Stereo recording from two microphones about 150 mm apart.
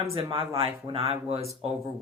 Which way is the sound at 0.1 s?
30° right (ahead or behind).